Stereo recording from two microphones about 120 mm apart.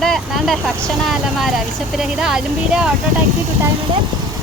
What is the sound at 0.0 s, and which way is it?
Vehicle, centre (ahead or behind).